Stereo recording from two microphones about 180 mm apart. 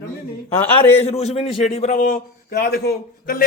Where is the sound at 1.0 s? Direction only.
35° left (ahead or behind).